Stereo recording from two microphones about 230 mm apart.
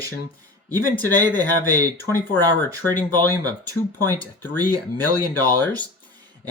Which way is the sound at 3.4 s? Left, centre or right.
Centre.